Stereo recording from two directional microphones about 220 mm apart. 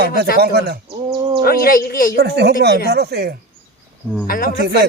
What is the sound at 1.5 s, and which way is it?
Speech, 45° left (ahead or behind).